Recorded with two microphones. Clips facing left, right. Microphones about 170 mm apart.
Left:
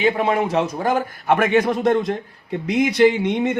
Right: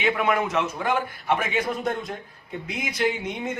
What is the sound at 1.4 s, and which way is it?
A man's voice, 80° left.